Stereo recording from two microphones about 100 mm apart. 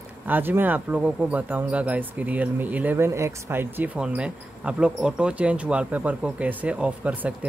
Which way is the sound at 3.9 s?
10° right (ahead or behind).